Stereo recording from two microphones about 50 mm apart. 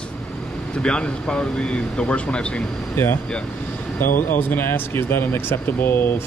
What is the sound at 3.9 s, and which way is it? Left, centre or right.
Speech, left.